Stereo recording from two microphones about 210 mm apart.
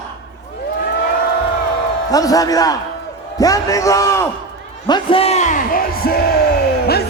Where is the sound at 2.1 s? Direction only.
15° left (ahead or behind); by 6.1 s 45° left (ahead or behind).